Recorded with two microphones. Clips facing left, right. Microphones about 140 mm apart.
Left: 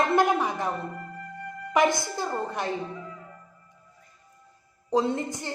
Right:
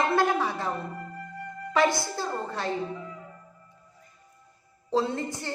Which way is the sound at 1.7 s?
15° left (ahead or behind).